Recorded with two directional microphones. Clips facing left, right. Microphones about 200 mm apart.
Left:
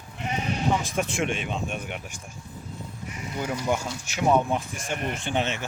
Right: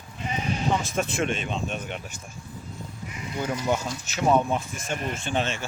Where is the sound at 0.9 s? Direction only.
15° left (ahead or behind).